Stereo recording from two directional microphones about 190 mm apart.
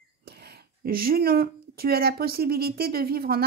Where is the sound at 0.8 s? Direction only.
50° right (ahead or behind).